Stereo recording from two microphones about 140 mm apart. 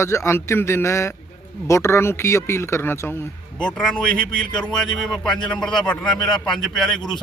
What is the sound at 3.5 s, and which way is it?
A man's voice, 5° left (ahead or behind).